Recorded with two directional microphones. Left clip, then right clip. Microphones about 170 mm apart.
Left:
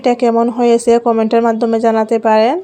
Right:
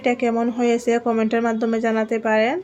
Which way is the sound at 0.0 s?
35° left (ahead or behind).